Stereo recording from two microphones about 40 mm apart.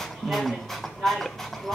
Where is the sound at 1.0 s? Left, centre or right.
Centre.